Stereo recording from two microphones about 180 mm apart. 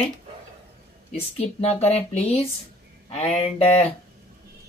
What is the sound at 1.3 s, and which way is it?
Speech, 35° left (ahead or behind).